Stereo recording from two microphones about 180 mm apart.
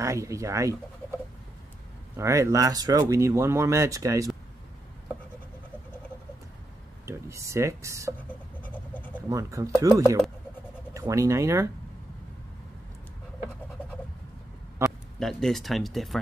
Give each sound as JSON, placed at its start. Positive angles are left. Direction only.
{"t": 0.0, "sound": "speech", "side_deg": -15}
{"t": 2.1, "sound": "speech", "side_deg": -15}
{"t": 7.1, "sound": "a sound", "side_deg": -15}
{"t": 8.6, "sound": "a sound", "side_deg": 10}
{"t": 9.3, "sound": "speech", "side_deg": -20}
{"t": 14.8, "sound": "speech", "side_deg": 0}